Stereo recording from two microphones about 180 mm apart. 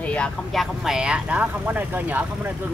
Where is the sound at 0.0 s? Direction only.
5° left (ahead or behind); by 2.2 s 10° right (ahead or behind).